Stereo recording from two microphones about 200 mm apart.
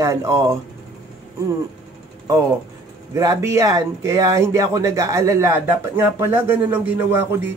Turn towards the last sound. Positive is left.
turn(degrees=-10)  # may be behind; listen again after turning